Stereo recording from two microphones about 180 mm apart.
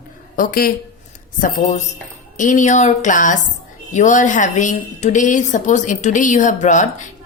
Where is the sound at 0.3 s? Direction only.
50° left (ahead or behind).